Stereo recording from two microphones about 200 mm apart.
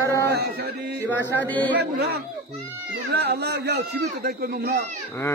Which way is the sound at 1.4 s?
10° left (ahead or behind).